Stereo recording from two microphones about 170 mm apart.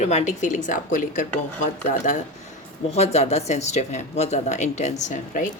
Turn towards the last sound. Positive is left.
turn(degrees=50)  # may be behind; listen again after turning